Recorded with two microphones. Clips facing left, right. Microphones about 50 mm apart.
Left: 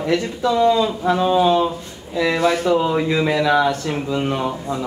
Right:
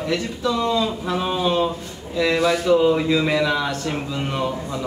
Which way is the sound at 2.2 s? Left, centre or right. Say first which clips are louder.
Left 1 dB; left.